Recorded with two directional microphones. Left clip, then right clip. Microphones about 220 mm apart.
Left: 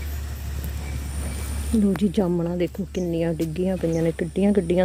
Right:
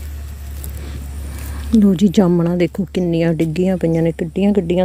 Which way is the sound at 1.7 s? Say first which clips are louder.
Right 8 dB; 30° right (ahead or behind).